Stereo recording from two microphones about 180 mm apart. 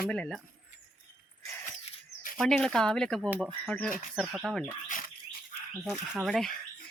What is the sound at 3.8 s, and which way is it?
Speech, 10° right (ahead or behind).